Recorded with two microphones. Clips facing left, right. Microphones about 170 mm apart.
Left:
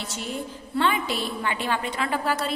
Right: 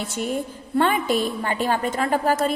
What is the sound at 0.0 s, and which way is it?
A woman's voice, 50° right (ahead or behind).